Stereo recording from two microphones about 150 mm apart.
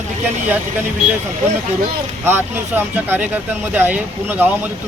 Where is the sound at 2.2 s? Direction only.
15° right (ahead or behind).